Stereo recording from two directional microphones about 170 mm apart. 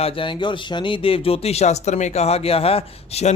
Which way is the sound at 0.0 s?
30° left (ahead or behind).